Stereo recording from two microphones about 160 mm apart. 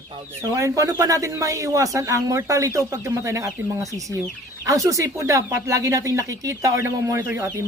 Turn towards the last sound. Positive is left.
turn(degrees=-15)  # may be behind; listen again after turning